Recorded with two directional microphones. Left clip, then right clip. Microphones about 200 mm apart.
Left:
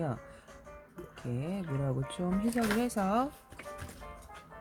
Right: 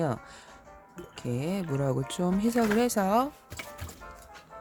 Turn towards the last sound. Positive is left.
turn(degrees=-20)  # may be behind; listen again after turning